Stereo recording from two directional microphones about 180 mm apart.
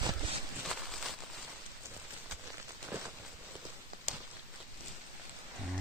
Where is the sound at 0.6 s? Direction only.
Centre (ahead or behind).